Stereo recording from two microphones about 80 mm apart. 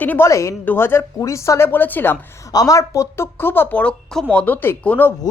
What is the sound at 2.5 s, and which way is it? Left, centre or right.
Speech, left.